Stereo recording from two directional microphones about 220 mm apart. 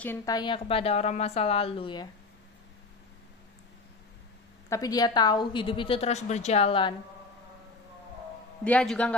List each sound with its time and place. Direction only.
0.0 s a woman's voice: 15° left (ahead or behind)
4.7 s a woman's voice: 15° left (ahead or behind)
8.6 s a man's voice: 5° left (ahead or behind)